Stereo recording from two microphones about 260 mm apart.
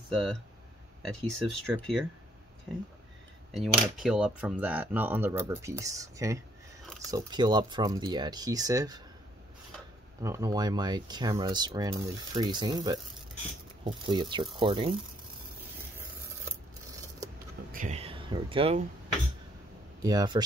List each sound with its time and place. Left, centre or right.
0.1 s speech: centre
3.5 s speech: centre
10.2 s speech: centre
17.7 s speech: right
20.0 s speech: centre